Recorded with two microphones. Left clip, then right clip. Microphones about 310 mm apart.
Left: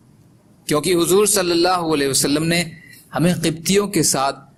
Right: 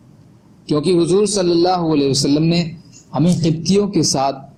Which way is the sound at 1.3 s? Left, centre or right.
Left.